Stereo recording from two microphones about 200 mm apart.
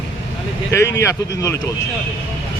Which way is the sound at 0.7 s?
15° left (ahead or behind).